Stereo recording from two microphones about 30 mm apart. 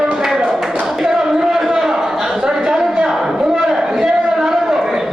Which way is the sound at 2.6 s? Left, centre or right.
Right.